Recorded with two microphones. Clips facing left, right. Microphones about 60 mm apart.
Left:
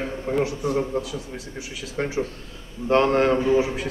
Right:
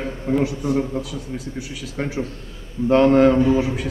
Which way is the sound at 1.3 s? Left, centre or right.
Centre.